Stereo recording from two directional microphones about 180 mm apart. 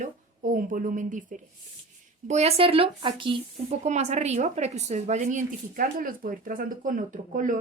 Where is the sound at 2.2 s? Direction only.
35° right (ahead or behind).